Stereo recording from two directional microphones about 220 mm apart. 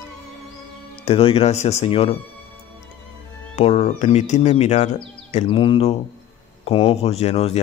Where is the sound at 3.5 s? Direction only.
30° left (ahead or behind).